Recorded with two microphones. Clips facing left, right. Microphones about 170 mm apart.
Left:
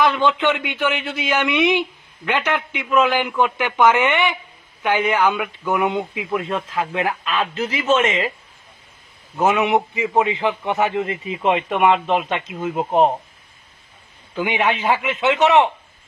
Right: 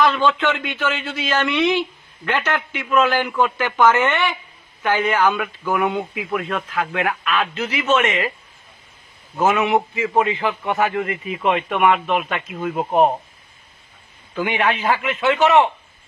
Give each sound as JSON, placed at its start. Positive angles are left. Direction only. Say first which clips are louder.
{"t": 0.0, "sound": "speech", "louder": "even", "side_deg": 15}
{"t": 9.4, "sound": "speech", "louder": "even", "side_deg": 20}
{"t": 14.3, "sound": "speech", "louder": "even", "side_deg": 20}